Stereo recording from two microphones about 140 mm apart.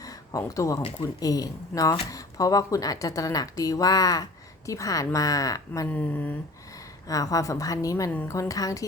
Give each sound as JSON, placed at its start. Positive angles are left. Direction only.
{"t": 0.0, "sound": "a sound", "side_deg": 25}
{"t": 0.8, "sound": "speech", "side_deg": 40}
{"t": 1.0, "sound": "speech", "side_deg": 25}
{"t": 5.9, "sound": "speech", "side_deg": 10}
{"t": 7.1, "sound": "speech", "side_deg": 25}